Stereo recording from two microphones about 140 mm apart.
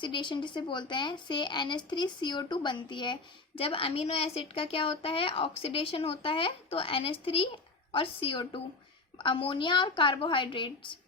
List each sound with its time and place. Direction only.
0.0 s a woman's voice: 35° left (ahead or behind)